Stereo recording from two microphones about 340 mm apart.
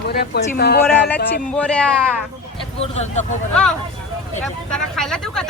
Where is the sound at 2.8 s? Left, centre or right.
Centre.